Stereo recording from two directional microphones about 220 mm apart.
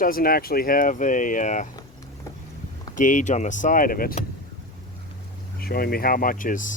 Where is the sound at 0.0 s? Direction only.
40° left (ahead or behind).